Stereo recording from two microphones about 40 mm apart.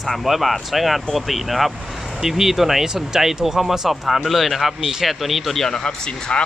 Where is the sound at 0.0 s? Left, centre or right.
Centre.